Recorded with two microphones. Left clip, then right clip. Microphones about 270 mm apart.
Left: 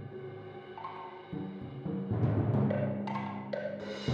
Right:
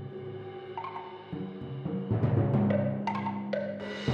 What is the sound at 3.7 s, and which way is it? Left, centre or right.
Music, right.